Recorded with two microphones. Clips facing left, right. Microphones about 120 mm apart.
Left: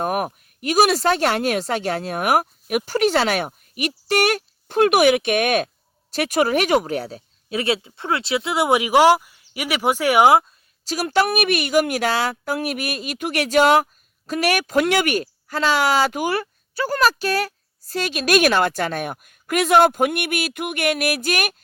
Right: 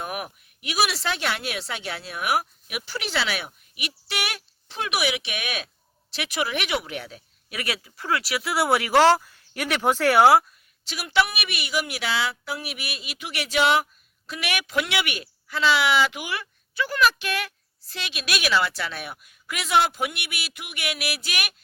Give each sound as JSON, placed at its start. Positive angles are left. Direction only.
{"t": 0.0, "sound": "speech", "side_deg": 45}
{"t": 10.8, "sound": "speech", "side_deg": 40}